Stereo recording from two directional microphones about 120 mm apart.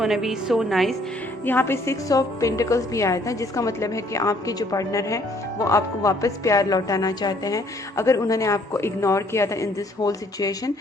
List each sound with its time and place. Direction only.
0.0 s a woman's voice: 5° right (ahead or behind)
1.5 s a woman's voice: 20° left (ahead or behind)